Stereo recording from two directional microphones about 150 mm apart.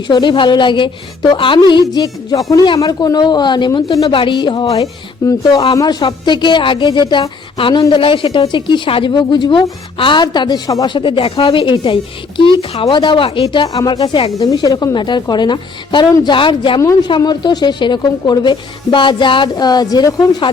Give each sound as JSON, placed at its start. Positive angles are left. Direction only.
{"t": 0.1, "sound": "a woman's voice", "side_deg": 30}